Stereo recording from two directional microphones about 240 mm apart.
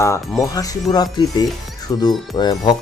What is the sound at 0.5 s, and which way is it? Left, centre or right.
Speech, centre.